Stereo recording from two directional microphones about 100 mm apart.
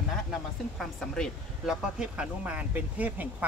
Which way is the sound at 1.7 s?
10° right (ahead or behind).